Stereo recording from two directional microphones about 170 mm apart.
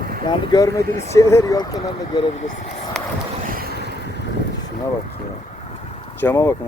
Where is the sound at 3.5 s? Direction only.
65° right (ahead or behind).